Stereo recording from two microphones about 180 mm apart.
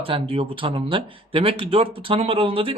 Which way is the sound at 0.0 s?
30° right (ahead or behind).